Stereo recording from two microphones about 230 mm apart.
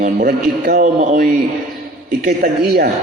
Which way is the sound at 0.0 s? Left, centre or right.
Right.